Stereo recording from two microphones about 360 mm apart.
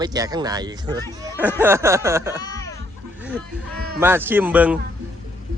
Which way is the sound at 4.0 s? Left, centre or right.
Centre.